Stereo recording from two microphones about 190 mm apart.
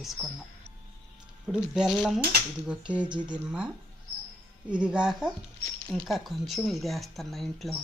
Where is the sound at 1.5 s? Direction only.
5° right (ahead or behind).